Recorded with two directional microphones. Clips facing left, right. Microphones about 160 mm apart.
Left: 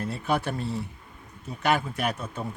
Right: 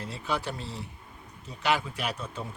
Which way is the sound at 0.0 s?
55° left (ahead or behind).